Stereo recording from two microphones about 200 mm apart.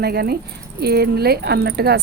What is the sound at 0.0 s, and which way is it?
Speech, 50° right (ahead or behind).